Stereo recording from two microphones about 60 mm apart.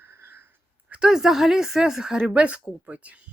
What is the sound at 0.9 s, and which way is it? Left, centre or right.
A woman's voice, centre.